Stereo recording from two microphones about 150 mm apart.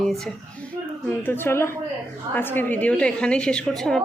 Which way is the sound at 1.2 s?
15° left (ahead or behind).